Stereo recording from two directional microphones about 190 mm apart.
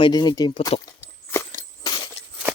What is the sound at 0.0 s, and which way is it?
Speech, 20° left (ahead or behind).